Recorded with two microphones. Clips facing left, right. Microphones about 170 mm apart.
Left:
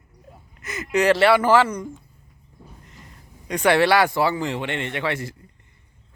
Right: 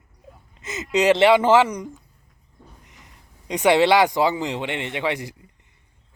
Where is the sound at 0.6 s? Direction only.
20° right (ahead or behind).